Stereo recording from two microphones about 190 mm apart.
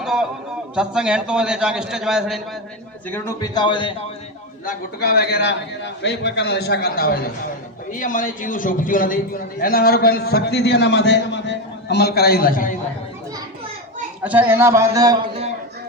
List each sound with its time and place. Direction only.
0.0 s a sound: centre (ahead or behind)
0.8 s a man's voice: 5° right (ahead or behind)
3.1 s a man's voice: 15° left (ahead or behind)
4.6 s a man's voice: 55° left (ahead or behind)
14.3 s a man's voice: 10° right (ahead or behind)